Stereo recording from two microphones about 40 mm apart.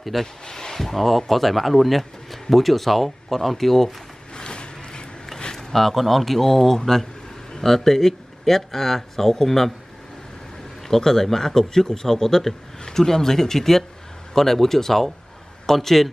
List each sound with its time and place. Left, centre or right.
0.0 s speech: centre
4.4 s a sound: left
5.7 s a man's voice: centre
10.8 s a man's voice: centre